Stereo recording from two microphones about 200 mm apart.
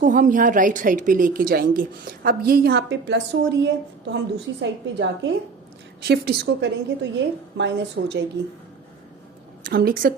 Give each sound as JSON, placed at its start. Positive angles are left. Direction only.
{"t": 0.0, "sound": "a woman's voice", "side_deg": -40}
{"t": 6.0, "sound": "a woman's voice", "side_deg": -55}
{"t": 9.6, "sound": "a woman's voice", "side_deg": -45}